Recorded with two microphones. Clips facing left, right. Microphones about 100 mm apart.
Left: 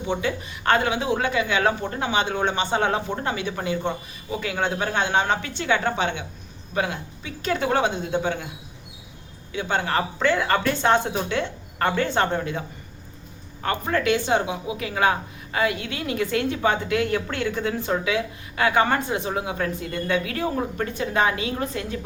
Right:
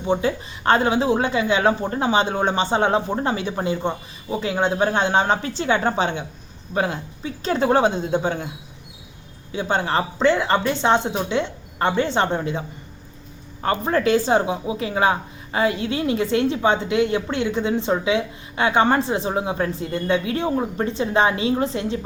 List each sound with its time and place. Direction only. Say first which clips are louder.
0.0 s a woman's voice: right 4 dB; 35° right (ahead or behind)
9.5 s a woman's voice: right 3 dB; 30° right (ahead or behind)